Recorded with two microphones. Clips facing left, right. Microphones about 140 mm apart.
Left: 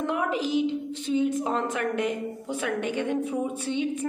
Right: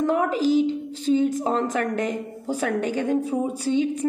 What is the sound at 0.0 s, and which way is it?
A woman's voice, 40° right (ahead or behind).